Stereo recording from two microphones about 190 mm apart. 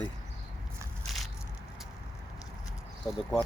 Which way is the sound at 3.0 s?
5° left (ahead or behind).